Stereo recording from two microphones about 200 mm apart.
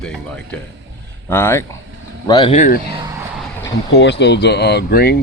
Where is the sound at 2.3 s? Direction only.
20° left (ahead or behind).